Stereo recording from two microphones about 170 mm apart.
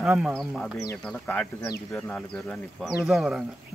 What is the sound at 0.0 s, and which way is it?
Speech, 5° right (ahead or behind).